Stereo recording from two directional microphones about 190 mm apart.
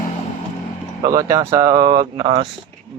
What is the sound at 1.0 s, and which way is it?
Speech, 20° right (ahead or behind).